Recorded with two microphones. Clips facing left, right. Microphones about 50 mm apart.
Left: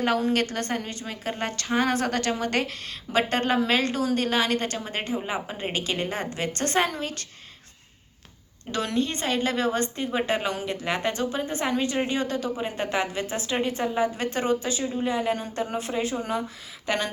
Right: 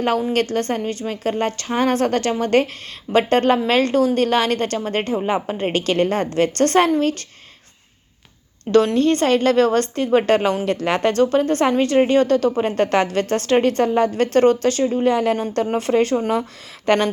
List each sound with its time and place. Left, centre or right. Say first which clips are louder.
0.5 s a woman's voice: right 8 dB; right
5.7 s a woman's voice: right 10 dB; right
8.7 s a woman's voice: right 12 dB; right
10.8 s a woman's voice: right 9 dB; right
16.8 s speech: right 10 dB; right